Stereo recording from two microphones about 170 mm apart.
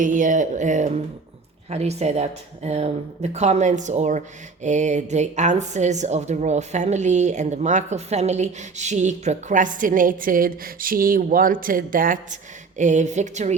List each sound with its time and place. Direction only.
0.0 s a woman's voice: 50° right (ahead or behind)